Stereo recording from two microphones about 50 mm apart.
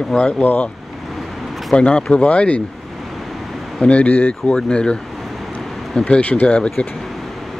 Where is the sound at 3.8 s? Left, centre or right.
Left.